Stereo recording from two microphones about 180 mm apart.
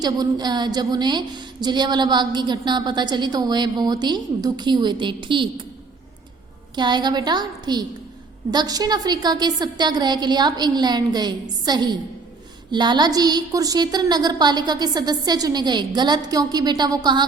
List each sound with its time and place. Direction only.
0.0 s a woman's voice: 20° right (ahead or behind)
6.7 s a woman's voice: 25° right (ahead or behind)